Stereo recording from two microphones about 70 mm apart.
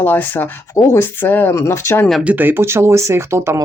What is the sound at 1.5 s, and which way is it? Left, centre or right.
Speech, left.